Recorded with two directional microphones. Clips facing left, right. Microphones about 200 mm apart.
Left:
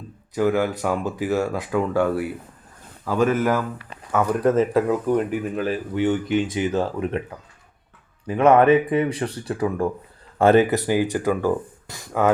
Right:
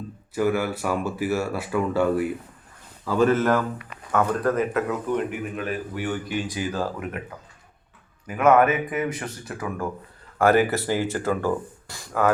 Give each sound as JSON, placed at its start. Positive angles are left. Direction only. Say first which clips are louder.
{"t": 0.3, "sound": "speech", "louder": "left 3 dB", "side_deg": 20}
{"t": 3.1, "sound": "speech", "louder": "even", "side_deg": 10}
{"t": 4.5, "sound": "speech", "louder": "left 5 dB", "side_deg": 30}
{"t": 8.3, "sound": "speech", "louder": "left 4 dB", "side_deg": 30}